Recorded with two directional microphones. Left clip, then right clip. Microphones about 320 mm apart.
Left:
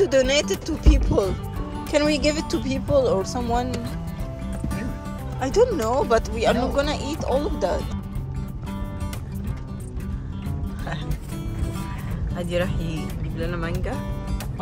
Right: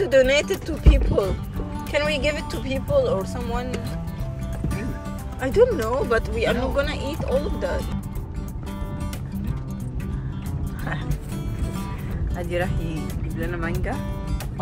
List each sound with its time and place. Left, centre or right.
0.0 s speech: centre
4.6 s music: centre
5.4 s speech: centre
12.4 s speech: centre